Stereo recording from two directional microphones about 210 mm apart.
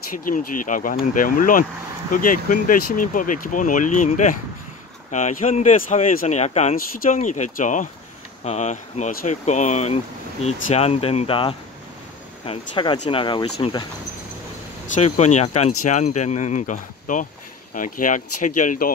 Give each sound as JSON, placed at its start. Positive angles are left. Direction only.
{"t": 0.1, "sound": "speech", "side_deg": 40}
{"t": 15.0, "sound": "speech", "side_deg": 30}